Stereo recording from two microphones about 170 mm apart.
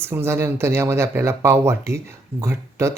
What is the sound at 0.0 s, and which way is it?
Speech, 15° right (ahead or behind).